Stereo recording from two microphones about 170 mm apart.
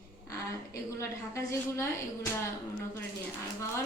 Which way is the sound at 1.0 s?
15° left (ahead or behind).